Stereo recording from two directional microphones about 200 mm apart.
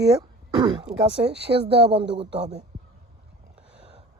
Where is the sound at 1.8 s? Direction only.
30° right (ahead or behind).